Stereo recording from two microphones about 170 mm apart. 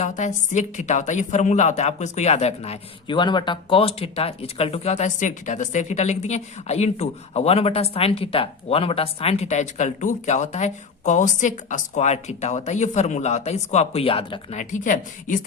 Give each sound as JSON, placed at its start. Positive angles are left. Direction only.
{"t": 0.0, "sound": "a woman's voice", "side_deg": 45}